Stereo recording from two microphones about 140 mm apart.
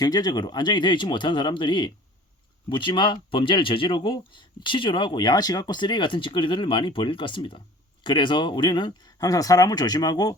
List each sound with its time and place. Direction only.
0.0 s speech: 30° left (ahead or behind)